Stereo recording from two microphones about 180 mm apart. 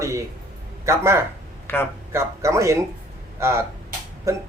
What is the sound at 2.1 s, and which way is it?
A man's voice, 15° right (ahead or behind).